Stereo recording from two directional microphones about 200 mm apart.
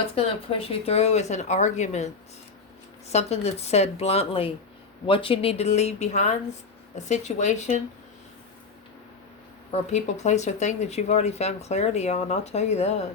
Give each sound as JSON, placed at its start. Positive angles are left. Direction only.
{"t": 0.2, "sound": "speech", "side_deg": 30}
{"t": 3.1, "sound": "speech", "side_deg": 35}
{"t": 9.7, "sound": "speech", "side_deg": 35}